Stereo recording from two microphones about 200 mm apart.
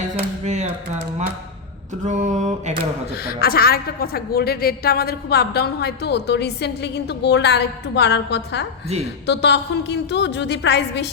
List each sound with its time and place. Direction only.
0.4 s speech: 35° right (ahead or behind)
2.0 s mantra: 35° right (ahead or behind)
3.2 s a woman's voice: 50° left (ahead or behind)